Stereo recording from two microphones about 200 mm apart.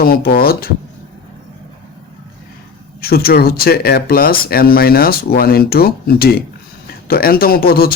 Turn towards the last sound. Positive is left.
turn(degrees=50)  # may be behind; listen again after turning